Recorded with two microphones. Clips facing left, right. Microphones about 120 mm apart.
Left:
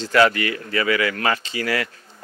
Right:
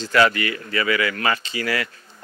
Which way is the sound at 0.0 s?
50° left (ahead or behind).